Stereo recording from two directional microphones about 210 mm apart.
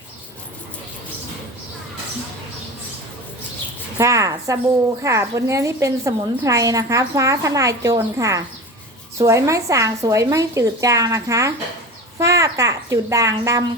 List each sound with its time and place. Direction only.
3.9 s a woman's voice: 15° right (ahead or behind)